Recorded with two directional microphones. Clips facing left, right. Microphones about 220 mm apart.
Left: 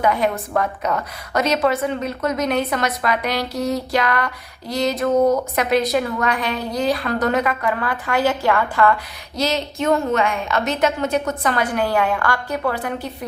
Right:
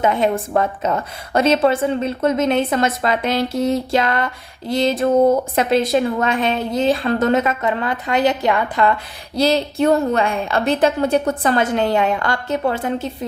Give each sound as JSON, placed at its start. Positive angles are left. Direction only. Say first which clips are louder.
{"t": 0.0, "sound": "a woman's voice", "louder": "right 2 dB", "side_deg": -25}